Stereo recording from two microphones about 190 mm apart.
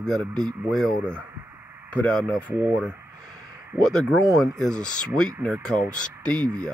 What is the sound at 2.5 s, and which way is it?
Speech, 10° right (ahead or behind).